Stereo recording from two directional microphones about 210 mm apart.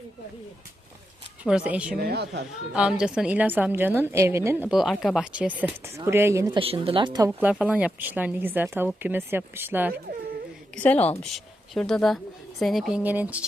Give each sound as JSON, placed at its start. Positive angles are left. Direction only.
{"t": 1.5, "sound": "a woman's voice", "side_deg": -5}
{"t": 2.0, "sound": "speech", "side_deg": -50}
{"t": 2.7, "sound": "a woman's voice", "side_deg": -5}
{"t": 7.3, "sound": "a woman's voice", "side_deg": -5}
{"t": 10.8, "sound": "a woman's voice", "side_deg": 5}